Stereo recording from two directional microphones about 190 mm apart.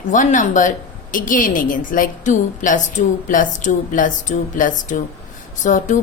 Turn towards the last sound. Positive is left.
turn(degrees=40)  # may be behind; listen again after turning